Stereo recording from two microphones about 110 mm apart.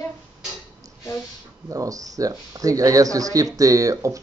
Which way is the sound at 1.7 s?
30° right (ahead or behind).